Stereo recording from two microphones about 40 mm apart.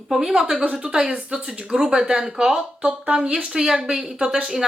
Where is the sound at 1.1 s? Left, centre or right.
Right.